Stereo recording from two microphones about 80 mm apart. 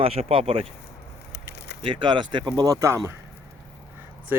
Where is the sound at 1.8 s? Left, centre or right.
Right.